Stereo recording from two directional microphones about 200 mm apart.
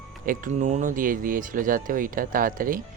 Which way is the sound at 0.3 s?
40° right (ahead or behind).